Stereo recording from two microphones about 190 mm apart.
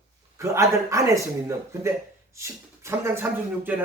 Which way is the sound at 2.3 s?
15° right (ahead or behind).